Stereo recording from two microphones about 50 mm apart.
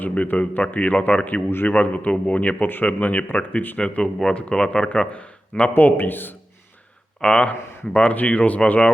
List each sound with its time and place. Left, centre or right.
0.0 s a man's voice: left
5.7 s a man's voice: left
7.2 s speech: left